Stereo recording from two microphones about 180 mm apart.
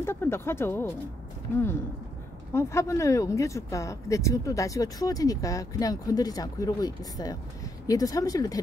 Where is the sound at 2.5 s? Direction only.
15° left (ahead or behind).